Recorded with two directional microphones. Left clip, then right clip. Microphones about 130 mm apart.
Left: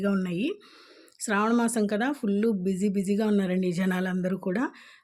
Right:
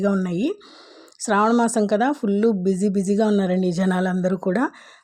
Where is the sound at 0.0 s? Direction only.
30° right (ahead or behind).